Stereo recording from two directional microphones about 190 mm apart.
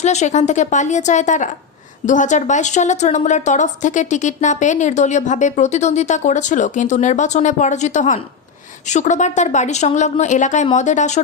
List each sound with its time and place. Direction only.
0.0 s a woman's voice: 35° left (ahead or behind)